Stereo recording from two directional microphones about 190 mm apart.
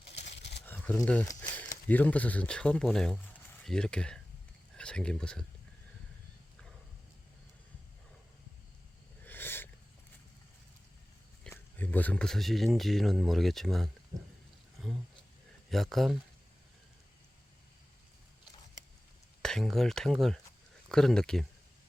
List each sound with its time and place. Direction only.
0.1 s wild animals: 65° left (ahead or behind)
0.6 s a sound: 10° left (ahead or behind)
1.9 s speech: 10° left (ahead or behind)
9.2 s a sound: 10° left (ahead or behind)
11.4 s speech: 10° left (ahead or behind)
15.7 s speech: centre (ahead or behind)
19.4 s speech: centre (ahead or behind)